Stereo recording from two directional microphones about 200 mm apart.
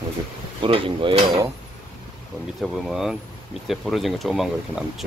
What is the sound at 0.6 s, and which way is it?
Cutlery, 25° right (ahead or behind).